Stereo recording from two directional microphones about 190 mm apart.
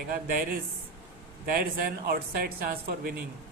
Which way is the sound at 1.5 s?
50° right (ahead or behind).